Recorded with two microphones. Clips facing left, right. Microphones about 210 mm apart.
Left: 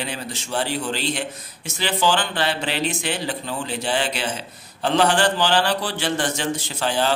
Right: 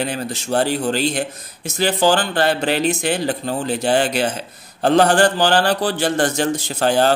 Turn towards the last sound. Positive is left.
turn(degrees=-45)  # may be behind; listen again after turning